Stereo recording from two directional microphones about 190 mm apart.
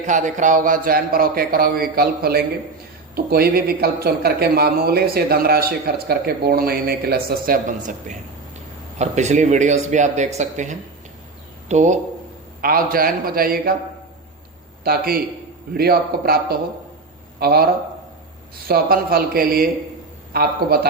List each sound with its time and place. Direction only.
0.0 s speech: 40° right (ahead or behind)
12.6 s speech: 50° right (ahead or behind)
14.8 s speech: 50° right (ahead or behind)
18.7 s speech: 50° right (ahead or behind)